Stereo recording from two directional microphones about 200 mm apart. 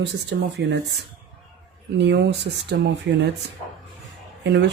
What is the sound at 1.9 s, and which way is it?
Speech, 60° right (ahead or behind).